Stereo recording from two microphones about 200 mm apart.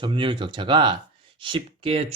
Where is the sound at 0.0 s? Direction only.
25° right (ahead or behind).